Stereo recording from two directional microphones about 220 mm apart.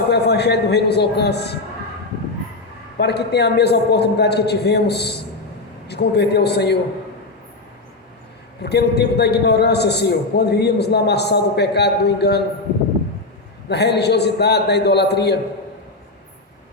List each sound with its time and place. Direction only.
0.1 s a man's voice: 50° left (ahead or behind)
3.0 s a man's voice: 50° left (ahead or behind)
8.6 s a man's voice: 50° left (ahead or behind)
13.7 s a man's voice: 50° left (ahead or behind)